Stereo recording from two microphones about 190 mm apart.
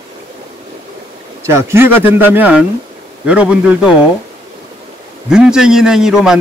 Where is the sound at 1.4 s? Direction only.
15° right (ahead or behind).